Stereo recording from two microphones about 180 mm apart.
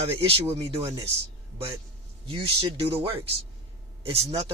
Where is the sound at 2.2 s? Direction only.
30° right (ahead or behind).